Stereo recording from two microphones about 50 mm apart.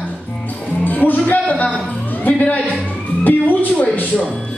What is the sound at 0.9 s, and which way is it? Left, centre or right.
Speech, left.